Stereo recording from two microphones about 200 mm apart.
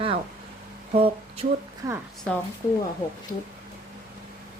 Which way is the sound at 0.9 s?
30° right (ahead or behind).